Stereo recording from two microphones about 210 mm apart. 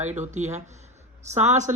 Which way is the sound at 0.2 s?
35° right (ahead or behind).